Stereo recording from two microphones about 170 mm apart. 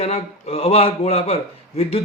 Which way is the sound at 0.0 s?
35° left (ahead or behind).